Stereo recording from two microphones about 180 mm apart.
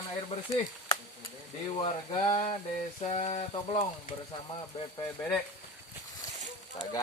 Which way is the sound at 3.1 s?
35° left (ahead or behind).